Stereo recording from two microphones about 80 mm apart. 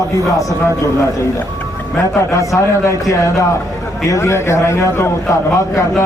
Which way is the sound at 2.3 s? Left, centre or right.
Left.